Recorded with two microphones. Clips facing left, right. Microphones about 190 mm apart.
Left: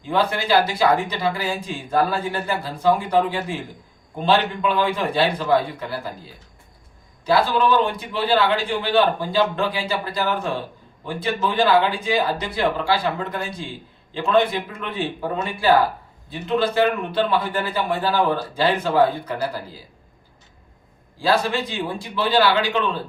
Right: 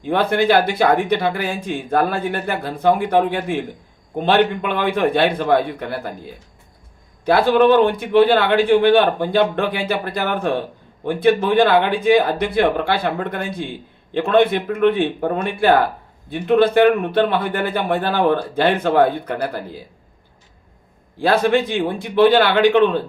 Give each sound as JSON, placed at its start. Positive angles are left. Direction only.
{"t": 0.0, "sound": "speech", "side_deg": -55}
{"t": 7.3, "sound": "speech", "side_deg": -55}
{"t": 21.2, "sound": "speech", "side_deg": -55}